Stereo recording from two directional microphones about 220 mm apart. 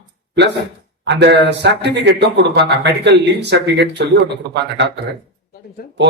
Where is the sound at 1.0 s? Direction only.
50° right (ahead or behind).